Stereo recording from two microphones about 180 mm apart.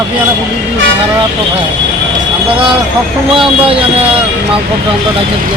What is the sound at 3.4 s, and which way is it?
Speech, 30° right (ahead or behind).